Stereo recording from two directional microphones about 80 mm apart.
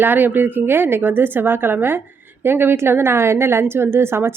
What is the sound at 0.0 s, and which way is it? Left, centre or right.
A woman's voice, right.